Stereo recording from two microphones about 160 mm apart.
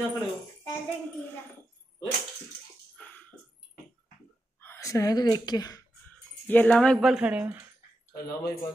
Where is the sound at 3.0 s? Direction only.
10° left (ahead or behind).